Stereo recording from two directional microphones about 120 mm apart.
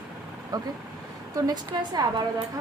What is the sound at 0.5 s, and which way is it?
A woman's voice, 30° right (ahead or behind).